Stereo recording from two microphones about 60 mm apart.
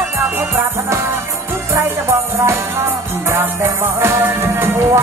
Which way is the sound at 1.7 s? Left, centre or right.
Right.